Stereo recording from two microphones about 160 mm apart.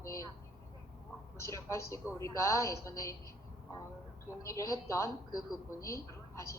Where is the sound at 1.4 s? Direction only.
20° left (ahead or behind).